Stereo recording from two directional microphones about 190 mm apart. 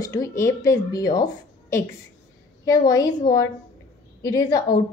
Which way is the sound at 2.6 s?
20° left (ahead or behind).